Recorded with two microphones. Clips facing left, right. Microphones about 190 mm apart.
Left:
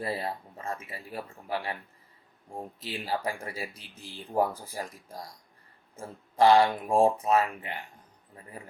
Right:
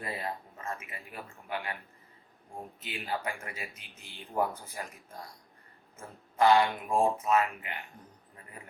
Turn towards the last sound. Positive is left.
turn(degrees=35)  # may be behind; listen again after turning